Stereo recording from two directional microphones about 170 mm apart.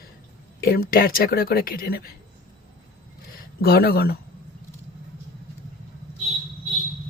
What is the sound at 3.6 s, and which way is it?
Speech, 65° left (ahead or behind).